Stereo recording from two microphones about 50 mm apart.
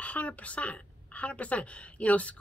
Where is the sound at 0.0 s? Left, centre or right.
Left.